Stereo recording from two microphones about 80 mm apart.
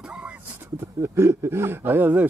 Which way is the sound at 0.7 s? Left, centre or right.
Right.